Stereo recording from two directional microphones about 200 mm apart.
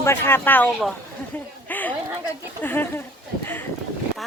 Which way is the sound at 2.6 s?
10° left (ahead or behind).